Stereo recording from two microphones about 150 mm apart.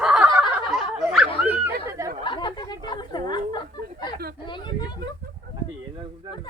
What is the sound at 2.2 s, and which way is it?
Speech, 30° left (ahead or behind).